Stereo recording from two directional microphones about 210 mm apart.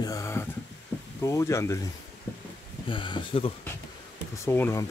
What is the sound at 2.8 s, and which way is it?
Speech, 25° left (ahead or behind).